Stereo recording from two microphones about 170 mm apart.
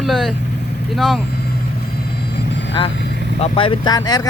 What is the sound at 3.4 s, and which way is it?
Speech, 35° left (ahead or behind).